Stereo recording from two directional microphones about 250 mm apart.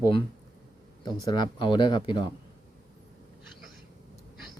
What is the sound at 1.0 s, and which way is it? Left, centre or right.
Speech, centre.